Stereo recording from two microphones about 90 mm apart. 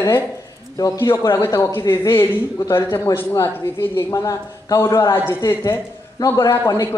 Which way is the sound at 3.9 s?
40° left (ahead or behind).